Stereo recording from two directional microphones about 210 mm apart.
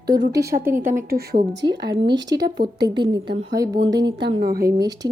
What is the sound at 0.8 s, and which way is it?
Speech, 40° right (ahead or behind).